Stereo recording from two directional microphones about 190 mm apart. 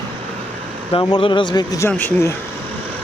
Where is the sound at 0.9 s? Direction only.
30° left (ahead or behind); by 2.4 s 10° left (ahead or behind).